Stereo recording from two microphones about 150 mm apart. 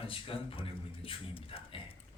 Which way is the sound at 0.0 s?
35° left (ahead or behind).